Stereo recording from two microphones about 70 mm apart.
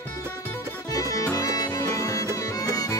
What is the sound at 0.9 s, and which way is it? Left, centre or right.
Music, left.